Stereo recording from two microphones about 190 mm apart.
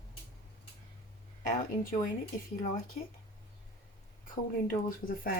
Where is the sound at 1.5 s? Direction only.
45° left (ahead or behind).